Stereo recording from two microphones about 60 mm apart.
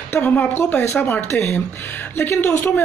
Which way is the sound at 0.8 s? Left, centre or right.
Left.